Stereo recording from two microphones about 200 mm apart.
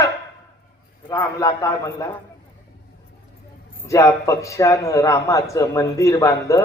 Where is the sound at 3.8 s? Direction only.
15° left (ahead or behind).